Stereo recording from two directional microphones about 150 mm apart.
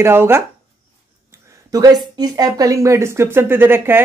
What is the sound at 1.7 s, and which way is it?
A woman's voice, 25° right (ahead or behind).